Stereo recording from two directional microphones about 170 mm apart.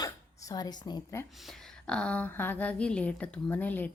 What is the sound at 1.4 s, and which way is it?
A woman's voice, centre (ahead or behind).